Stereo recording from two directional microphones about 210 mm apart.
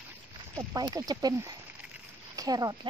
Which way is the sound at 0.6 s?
15° right (ahead or behind).